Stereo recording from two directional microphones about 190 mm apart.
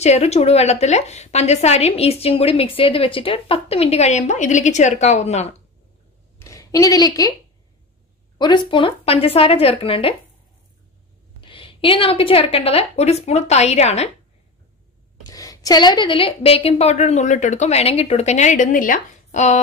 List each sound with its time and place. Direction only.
0.0 s a woman's voice: 35° left (ahead or behind)
6.4 s a woman's voice: 15° left (ahead or behind)
8.4 s speech: 25° left (ahead or behind)
11.4 s a woman's voice: 30° left (ahead or behind)
15.2 s a woman's voice: 20° left (ahead or behind); by 19.6 s 35° left (ahead or behind)